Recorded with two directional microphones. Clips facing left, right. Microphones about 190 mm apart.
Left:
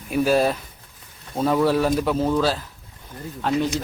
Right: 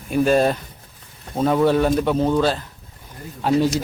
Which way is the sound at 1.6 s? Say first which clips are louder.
Right 2 dB; 5° left (ahead or behind).